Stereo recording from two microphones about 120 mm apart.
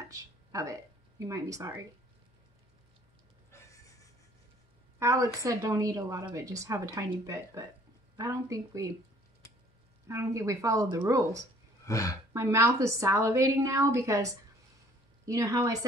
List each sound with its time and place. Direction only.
0.1 s a sound: 25° right (ahead or behind)
1.2 s a woman's voice: 30° right (ahead or behind)
3.5 s neigh: 30° left (ahead or behind)
4.9 s a woman's voice: 25° right (ahead or behind)
10.0 s a woman's voice: 25° right (ahead or behind)
11.9 s speech: 25° left (ahead or behind)
12.3 s a woman's voice: 25° right (ahead or behind)